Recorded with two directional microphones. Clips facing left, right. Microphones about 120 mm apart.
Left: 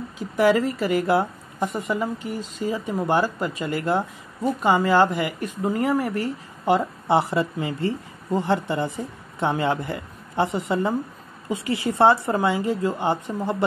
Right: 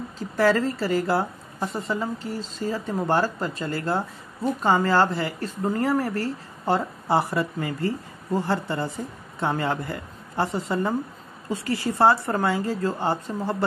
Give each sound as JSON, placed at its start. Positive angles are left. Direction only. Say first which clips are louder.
{"t": 0.4, "sound": "a woman's voice", "louder": "left 2 dB", "side_deg": 15}